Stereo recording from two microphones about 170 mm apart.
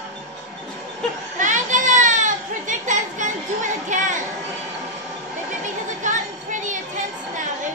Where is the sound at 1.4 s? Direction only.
45° right (ahead or behind).